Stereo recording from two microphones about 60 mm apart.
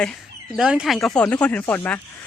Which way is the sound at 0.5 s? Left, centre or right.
Centre.